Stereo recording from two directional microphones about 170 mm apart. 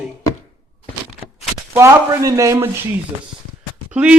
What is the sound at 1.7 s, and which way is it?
Speech, 20° right (ahead or behind).